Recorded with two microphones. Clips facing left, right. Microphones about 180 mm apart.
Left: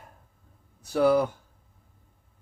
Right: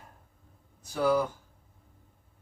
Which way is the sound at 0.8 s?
60° left (ahead or behind).